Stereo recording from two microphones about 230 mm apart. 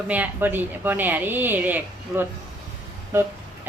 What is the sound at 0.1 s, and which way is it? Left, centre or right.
A woman's voice, centre.